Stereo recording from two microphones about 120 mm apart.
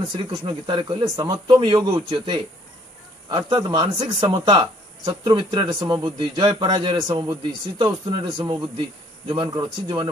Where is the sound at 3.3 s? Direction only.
40° right (ahead or behind).